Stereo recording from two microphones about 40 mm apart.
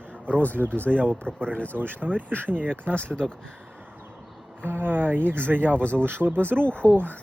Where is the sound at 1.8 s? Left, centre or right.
Right.